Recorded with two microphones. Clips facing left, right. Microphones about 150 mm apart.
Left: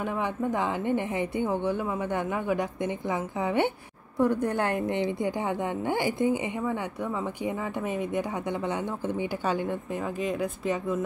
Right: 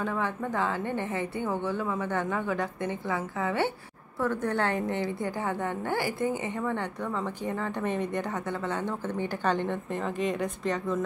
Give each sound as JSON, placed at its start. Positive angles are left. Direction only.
{"t": 0.0, "sound": "a woman's voice", "side_deg": 15}